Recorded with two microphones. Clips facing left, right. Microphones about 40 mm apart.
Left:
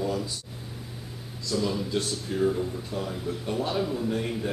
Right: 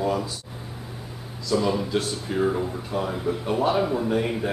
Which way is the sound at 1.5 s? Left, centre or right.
Centre.